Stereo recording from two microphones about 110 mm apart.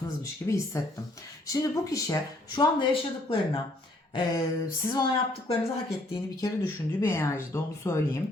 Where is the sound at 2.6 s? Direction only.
50° left (ahead or behind).